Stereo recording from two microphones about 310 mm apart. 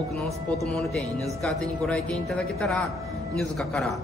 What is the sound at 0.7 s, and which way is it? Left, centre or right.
A man's voice, centre.